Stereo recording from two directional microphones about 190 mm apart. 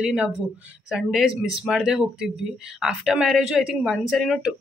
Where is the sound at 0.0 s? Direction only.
5° right (ahead or behind).